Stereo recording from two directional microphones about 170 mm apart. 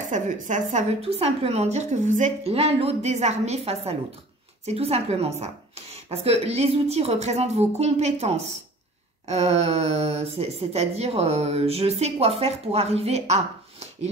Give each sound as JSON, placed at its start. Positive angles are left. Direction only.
{"t": 0.0, "sound": "speech", "side_deg": -50}